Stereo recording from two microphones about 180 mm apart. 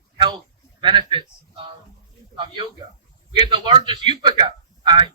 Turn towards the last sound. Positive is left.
turn(degrees=-25)  # may be behind; listen again after turning